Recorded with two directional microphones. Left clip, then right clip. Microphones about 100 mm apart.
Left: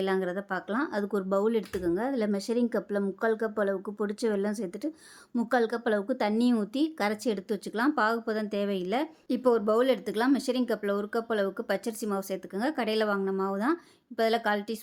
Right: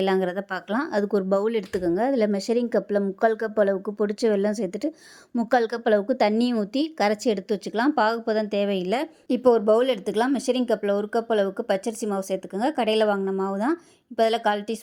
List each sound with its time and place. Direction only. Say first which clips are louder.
0.0 s speech: right 6 dB; 50° right (ahead or behind); by 14.8 s 30° right (ahead or behind)